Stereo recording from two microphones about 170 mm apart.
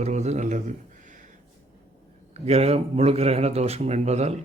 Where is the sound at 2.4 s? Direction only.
35° right (ahead or behind).